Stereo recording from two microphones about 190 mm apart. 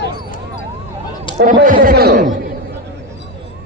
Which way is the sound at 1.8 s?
55° right (ahead or behind).